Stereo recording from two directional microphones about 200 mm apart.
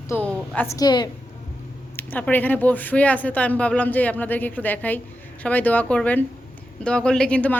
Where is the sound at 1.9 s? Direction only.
10° left (ahead or behind).